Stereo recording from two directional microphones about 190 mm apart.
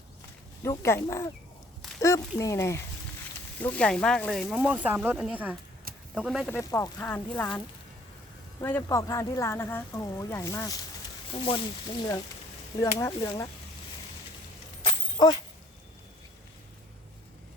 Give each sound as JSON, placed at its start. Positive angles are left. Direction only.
{"t": 0.6, "sound": "speech", "side_deg": 15}
{"t": 6.5, "sound": "speech", "side_deg": 15}
{"t": 8.6, "sound": "speech", "side_deg": 15}
{"t": 11.3, "sound": "speech", "side_deg": 30}
{"t": 12.8, "sound": "speech", "side_deg": 15}
{"t": 14.8, "sound": "shatter", "side_deg": 20}